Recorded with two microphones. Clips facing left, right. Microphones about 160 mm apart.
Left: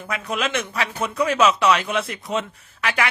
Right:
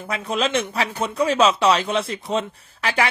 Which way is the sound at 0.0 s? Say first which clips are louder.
Right 2 dB; 30° right (ahead or behind).